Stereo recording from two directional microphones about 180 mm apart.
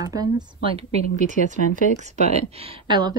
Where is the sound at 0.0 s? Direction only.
20° right (ahead or behind).